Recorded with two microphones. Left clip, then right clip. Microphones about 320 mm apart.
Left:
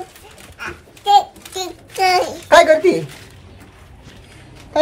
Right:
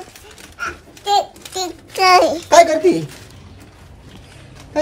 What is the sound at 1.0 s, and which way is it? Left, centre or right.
Babbling, centre.